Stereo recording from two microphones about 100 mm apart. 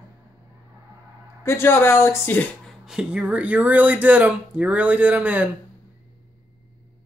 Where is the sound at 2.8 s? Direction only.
10° right (ahead or behind).